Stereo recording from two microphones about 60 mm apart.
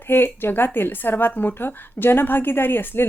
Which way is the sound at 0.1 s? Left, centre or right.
Left.